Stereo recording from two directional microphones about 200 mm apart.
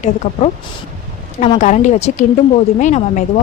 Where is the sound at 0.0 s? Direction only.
30° left (ahead or behind).